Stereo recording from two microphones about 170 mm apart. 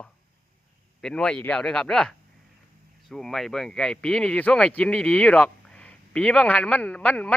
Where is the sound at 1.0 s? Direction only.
5° left (ahead or behind).